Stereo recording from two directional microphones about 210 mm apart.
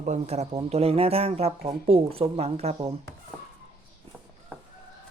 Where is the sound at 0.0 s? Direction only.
35° right (ahead or behind).